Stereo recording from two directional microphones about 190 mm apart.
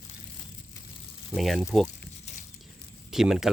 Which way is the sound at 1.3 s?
Centre (ahead or behind).